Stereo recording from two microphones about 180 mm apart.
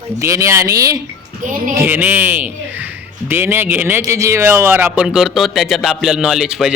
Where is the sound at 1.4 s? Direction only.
45° right (ahead or behind).